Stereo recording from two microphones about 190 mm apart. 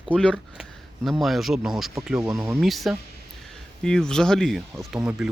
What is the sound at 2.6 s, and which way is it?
Speech, centre (ahead or behind).